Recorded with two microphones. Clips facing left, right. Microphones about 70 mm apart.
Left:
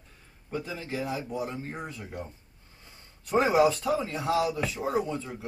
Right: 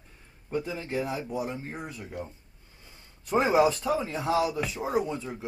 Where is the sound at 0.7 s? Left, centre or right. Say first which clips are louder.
Right 3 dB; right.